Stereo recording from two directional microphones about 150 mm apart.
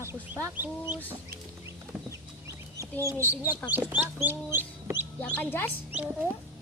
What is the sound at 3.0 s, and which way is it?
Speech, 15° right (ahead or behind).